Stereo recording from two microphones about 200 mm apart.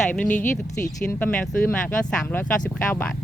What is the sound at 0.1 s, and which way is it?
Speech, 10° left (ahead or behind).